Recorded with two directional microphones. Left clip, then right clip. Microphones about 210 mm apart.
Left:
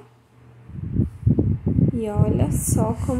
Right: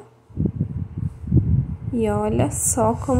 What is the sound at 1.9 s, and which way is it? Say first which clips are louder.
Speech: right 4 dB; 10° right (ahead or behind).